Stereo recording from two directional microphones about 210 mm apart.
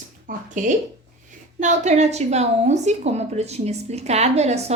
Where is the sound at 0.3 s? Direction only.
40° right (ahead or behind).